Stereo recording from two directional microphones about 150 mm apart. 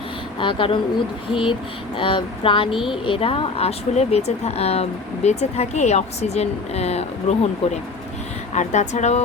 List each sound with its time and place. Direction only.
0.3 s speech: 35° left (ahead or behind)
2.7 s a woman's voice: 5° right (ahead or behind)
3.0 s speech: 35° left (ahead or behind)